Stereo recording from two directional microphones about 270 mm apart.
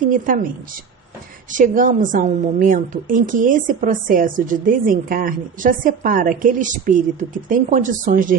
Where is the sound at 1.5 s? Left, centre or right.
Right.